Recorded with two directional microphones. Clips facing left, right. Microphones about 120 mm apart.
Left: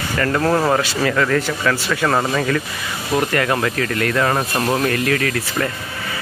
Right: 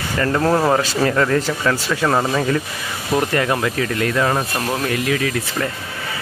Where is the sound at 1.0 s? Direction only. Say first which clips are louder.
Right 1 dB; 25° right (ahead or behind).